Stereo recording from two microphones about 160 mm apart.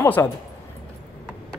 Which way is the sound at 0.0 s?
15° left (ahead or behind).